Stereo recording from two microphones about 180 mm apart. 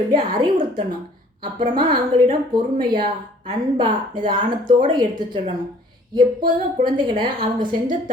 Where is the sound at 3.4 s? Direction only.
25° right (ahead or behind).